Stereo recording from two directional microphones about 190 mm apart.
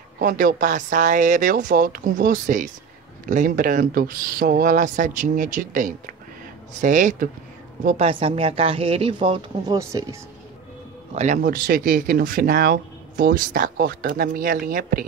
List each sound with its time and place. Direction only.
0.2 s a woman's voice: 45° right (ahead or behind)
8.1 s speech: 30° right (ahead or behind)
11.1 s speech: 45° right (ahead or behind)